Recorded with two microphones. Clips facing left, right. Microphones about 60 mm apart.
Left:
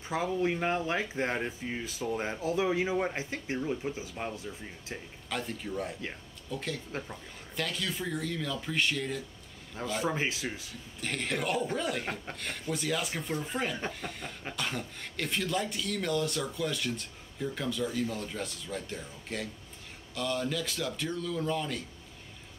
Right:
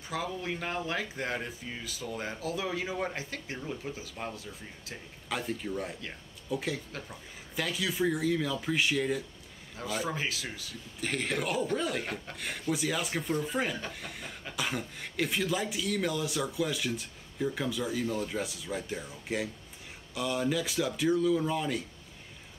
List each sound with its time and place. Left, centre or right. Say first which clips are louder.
0.1 s speech: left 5 dB; left
5.3 s speech: right 2 dB; centre
10.0 s speech: left 3 dB; left
11.0 s speech: right 1 dB; centre